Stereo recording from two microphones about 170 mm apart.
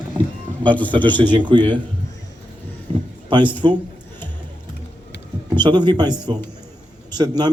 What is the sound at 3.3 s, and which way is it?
Speech, 10° left (ahead or behind).